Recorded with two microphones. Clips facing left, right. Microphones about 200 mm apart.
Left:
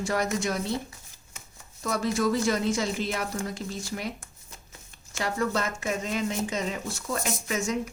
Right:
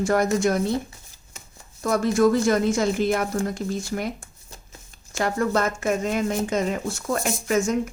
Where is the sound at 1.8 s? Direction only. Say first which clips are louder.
Right 7 dB; 50° right (ahead or behind).